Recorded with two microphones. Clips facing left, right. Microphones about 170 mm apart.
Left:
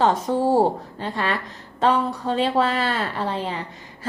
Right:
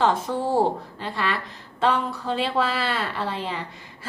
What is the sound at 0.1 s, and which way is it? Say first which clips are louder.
Speech: left 4 dB; 30° left (ahead or behind).